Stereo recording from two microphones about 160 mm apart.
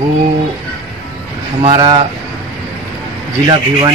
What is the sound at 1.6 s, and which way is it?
Speech, 25° right (ahead or behind).